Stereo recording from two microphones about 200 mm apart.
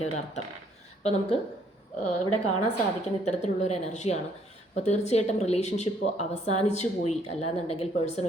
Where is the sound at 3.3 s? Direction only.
35° left (ahead or behind).